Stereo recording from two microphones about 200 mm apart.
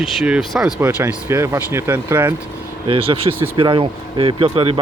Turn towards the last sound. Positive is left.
turn(degrees=-30)  # may be behind; listen again after turning